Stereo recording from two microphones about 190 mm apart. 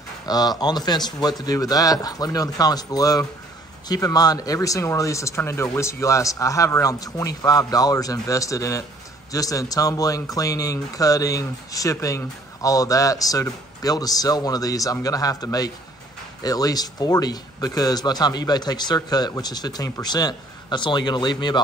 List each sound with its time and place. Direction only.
0.3 s speech: 20° left (ahead or behind)